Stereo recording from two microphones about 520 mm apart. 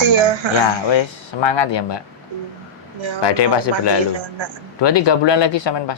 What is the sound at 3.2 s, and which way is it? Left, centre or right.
Speech, left.